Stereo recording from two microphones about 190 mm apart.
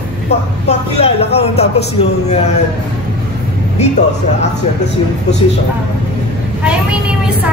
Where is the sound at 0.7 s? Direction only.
35° left (ahead or behind).